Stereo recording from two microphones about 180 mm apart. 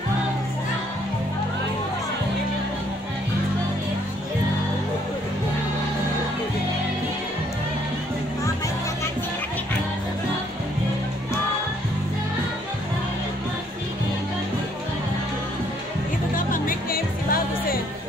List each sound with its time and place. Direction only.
16.3 s music: 50° left (ahead or behind)